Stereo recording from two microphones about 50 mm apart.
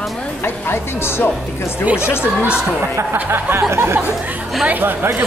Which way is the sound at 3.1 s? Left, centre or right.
Right.